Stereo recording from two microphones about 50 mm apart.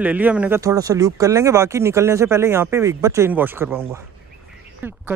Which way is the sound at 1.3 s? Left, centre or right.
Right.